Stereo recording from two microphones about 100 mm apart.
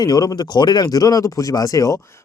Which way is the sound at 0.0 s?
40° left (ahead or behind).